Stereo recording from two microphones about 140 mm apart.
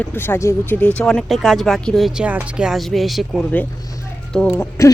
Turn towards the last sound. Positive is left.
turn(degrees=20)  # may be behind; listen again after turning